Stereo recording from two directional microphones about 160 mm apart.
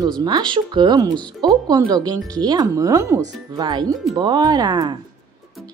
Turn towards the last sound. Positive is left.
turn(degrees=-25)  # may be behind; listen again after turning